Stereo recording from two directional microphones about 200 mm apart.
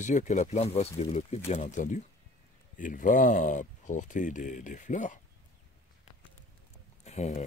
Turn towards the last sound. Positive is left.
turn(degrees=35)  # may be behind; listen again after turning